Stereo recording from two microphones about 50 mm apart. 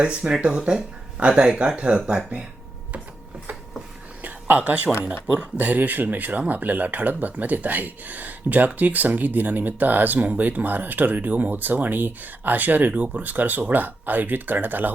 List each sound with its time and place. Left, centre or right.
0.0 s speech: centre
4.2 s a sound: right
5.4 s speech: right